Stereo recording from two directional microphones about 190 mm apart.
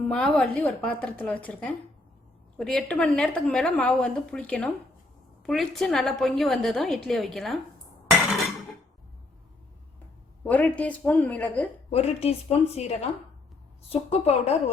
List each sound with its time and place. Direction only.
0.1 s a woman's voice: 5° left (ahead or behind)
10.4 s a woman's voice: 5° left (ahead or behind)
11.9 s a woman's voice: 35° left (ahead or behind)